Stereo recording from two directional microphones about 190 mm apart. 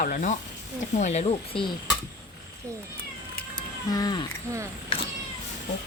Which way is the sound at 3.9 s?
20° left (ahead or behind).